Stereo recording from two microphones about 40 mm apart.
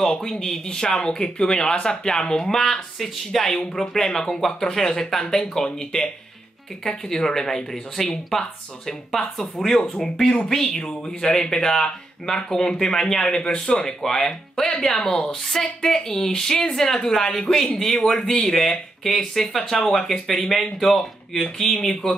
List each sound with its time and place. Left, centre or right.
0.3 s speech: centre
13.8 s speech: centre
21.6 s speech: centre